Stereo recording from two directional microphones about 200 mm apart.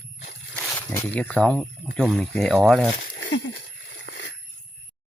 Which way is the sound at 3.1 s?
55° left (ahead or behind).